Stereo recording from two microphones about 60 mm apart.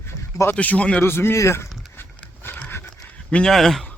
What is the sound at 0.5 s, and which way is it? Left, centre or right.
Speech, left.